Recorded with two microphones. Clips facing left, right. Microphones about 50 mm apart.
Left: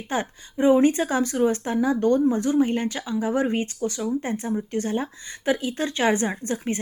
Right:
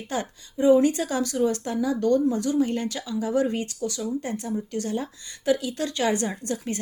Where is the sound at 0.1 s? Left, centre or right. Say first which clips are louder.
Left 3 dB; left.